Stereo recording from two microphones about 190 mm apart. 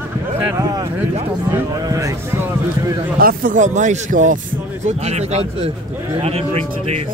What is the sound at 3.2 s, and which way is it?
Speech, 45° right (ahead or behind).